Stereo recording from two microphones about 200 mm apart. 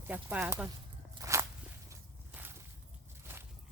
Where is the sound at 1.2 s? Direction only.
15° right (ahead or behind).